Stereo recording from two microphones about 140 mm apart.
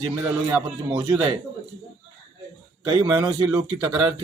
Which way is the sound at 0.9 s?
30° right (ahead or behind).